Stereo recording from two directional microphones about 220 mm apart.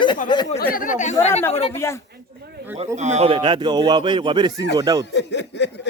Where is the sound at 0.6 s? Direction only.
40° left (ahead or behind); by 1.8 s 25° left (ahead or behind).